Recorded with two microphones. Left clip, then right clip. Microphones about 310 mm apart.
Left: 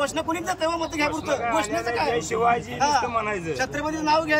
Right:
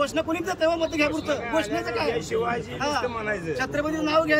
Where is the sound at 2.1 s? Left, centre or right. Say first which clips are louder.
Left 4 dB; centre.